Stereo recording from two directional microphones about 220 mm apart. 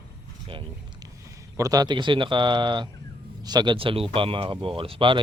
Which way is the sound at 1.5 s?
15° right (ahead or behind).